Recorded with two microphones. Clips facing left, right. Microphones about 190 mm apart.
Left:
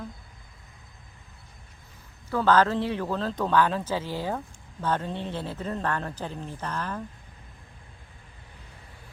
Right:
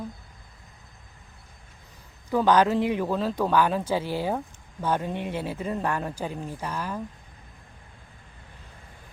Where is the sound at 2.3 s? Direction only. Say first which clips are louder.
Right 2 dB; 15° right (ahead or behind).